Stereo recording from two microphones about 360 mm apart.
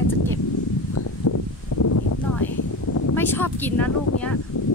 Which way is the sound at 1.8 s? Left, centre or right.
Left.